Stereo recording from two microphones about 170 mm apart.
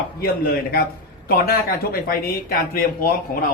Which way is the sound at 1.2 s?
65° left (ahead or behind).